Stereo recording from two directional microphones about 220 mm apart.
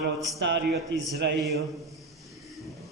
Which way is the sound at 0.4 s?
50° right (ahead or behind).